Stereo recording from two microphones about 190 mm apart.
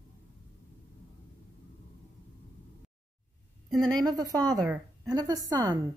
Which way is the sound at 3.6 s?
Centre (ahead or behind).